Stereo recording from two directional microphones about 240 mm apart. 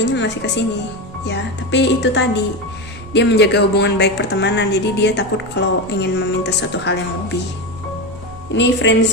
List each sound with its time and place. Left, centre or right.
0.0 s a woman's voice: left
8.5 s a woman's voice: left